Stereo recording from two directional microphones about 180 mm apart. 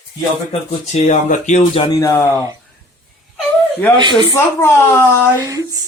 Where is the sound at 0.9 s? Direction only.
40° left (ahead or behind).